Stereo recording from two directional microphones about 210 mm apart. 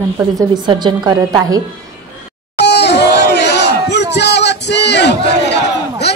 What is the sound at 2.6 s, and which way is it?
Crowd, 55° left (ahead or behind).